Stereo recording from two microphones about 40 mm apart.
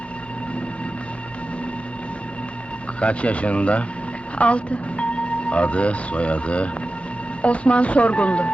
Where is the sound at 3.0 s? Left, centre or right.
Left.